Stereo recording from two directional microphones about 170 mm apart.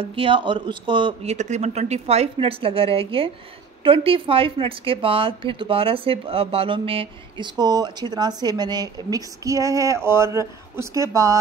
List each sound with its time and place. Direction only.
0.0 s a woman's voice: 30° right (ahead or behind)